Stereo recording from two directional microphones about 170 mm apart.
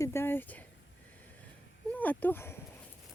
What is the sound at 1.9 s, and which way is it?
Speech, 10° left (ahead or behind).